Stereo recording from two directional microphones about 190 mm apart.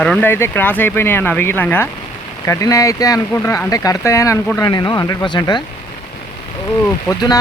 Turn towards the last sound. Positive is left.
turn(degrees=20)  # may be behind; listen again after turning